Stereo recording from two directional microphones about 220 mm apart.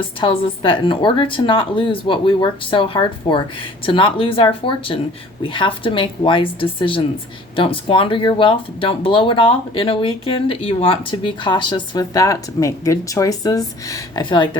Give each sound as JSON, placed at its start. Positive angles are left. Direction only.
{"t": 0.2, "sound": "speech", "side_deg": 25}